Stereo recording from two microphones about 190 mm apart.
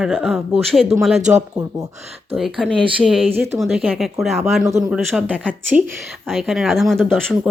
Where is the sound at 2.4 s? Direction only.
Centre (ahead or behind).